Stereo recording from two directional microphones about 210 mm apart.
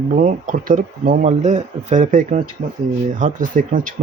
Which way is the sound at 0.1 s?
40° right (ahead or behind).